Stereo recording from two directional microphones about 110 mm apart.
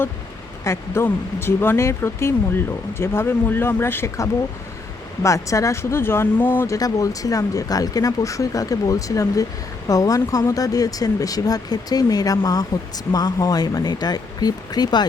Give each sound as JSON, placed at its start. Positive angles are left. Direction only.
{"t": 0.6, "sound": "speech", "side_deg": 25}
{"t": 6.7, "sound": "speech", "side_deg": 35}